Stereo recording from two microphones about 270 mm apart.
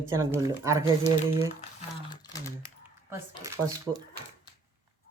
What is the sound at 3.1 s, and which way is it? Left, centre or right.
Speech, centre.